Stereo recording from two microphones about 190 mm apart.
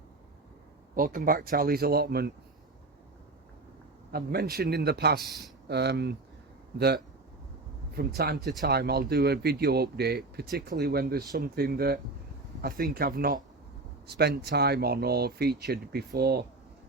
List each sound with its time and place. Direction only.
0.9 s speech: 50° right (ahead or behind)
4.1 s speech: 55° right (ahead or behind)
8.4 s speech: centre (ahead or behind)
8.6 s speech: 55° right (ahead or behind)